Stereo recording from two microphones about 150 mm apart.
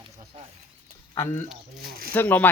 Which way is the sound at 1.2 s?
15° left (ahead or behind).